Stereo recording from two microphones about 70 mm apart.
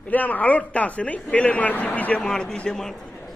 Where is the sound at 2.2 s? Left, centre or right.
Centre.